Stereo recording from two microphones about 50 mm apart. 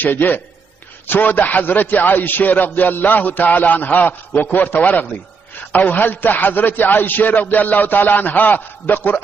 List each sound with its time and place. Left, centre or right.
0.0 s a man's voice: left